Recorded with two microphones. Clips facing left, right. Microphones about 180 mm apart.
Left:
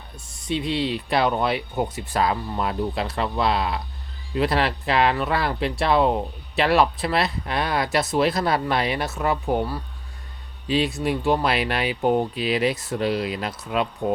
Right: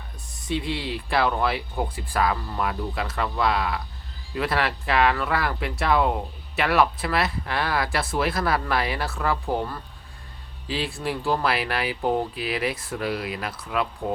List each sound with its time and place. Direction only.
0.4 s speech: 25° left (ahead or behind)
10.7 s speech: 20° left (ahead or behind)